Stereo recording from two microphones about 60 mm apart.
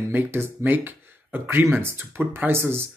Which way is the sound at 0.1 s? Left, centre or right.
Right.